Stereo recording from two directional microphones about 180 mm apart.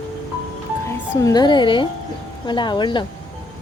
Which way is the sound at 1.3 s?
25° left (ahead or behind).